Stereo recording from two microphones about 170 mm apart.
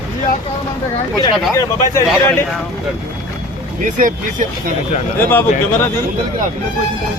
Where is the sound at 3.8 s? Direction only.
50° right (ahead or behind).